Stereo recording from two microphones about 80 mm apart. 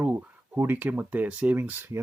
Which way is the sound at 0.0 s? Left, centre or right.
Centre.